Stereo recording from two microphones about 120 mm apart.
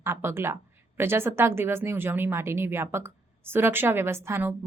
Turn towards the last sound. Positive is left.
turn(degrees=-20)  # may be behind; listen again after turning